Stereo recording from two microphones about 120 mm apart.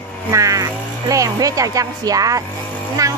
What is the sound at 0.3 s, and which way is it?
Speech, 25° right (ahead or behind).